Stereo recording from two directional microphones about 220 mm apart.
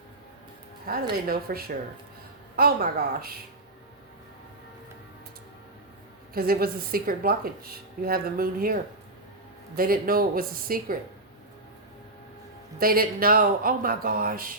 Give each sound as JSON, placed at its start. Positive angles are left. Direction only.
{"t": 0.9, "sound": "a woman's voice", "side_deg": -45}
{"t": 6.3, "sound": "a woman's voice", "side_deg": -45}
{"t": 12.8, "sound": "speech", "side_deg": -40}